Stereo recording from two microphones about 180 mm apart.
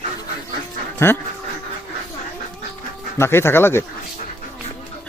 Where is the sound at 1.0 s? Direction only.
15° left (ahead or behind).